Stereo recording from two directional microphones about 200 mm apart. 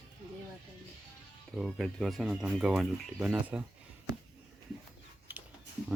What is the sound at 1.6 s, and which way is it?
Speech, centre (ahead or behind).